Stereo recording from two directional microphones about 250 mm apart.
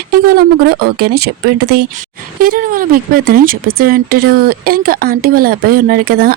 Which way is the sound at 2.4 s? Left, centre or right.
Right.